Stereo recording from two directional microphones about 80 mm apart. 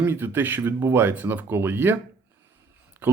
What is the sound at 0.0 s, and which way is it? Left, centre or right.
Speech, right.